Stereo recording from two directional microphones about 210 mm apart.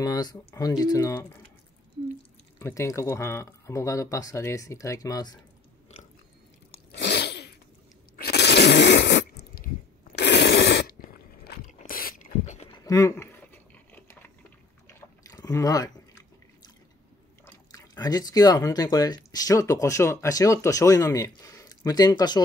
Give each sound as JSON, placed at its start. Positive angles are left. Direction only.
{"t": 0.0, "sound": "speech", "side_deg": 20}
{"t": 2.6, "sound": "speech", "side_deg": 15}
{"t": 6.9, "sound": "sneeze", "side_deg": 55}
{"t": 8.2, "sound": "a sound", "side_deg": 50}
{"t": 12.7, "sound": "a sound", "side_deg": 15}
{"t": 17.6, "sound": "speech", "side_deg": 20}